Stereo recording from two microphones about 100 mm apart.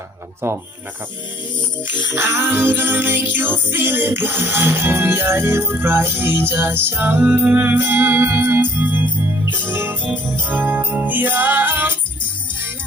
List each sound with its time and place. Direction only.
0.4 s music: 25° right (ahead or behind)
1.8 s music: 20° right (ahead or behind)
9.4 s jingle bell: 20° right (ahead or behind)